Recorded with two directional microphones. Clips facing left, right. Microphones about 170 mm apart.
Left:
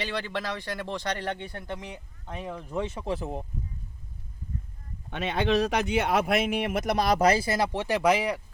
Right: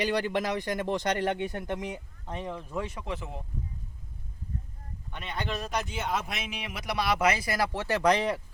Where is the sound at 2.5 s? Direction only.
20° left (ahead or behind); by 3.4 s 35° left (ahead or behind).